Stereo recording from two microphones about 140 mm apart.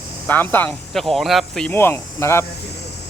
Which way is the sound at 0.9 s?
Centre (ahead or behind).